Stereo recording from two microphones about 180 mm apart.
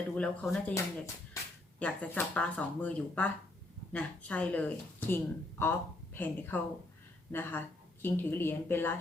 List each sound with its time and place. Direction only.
0.2 s speech: 5° left (ahead or behind)
0.7 s speech: 15° left (ahead or behind)